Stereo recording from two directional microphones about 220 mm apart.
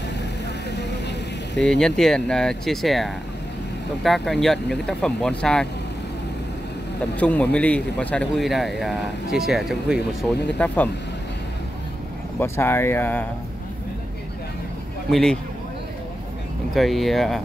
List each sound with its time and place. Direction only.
0.7 s vehicle: 50° left (ahead or behind)
1.6 s speech: centre (ahead or behind)
7.2 s speech: 5° left (ahead or behind)
12.4 s speech: 10° left (ahead or behind)
15.0 s speech: centre (ahead or behind)
16.7 s speech: centre (ahead or behind)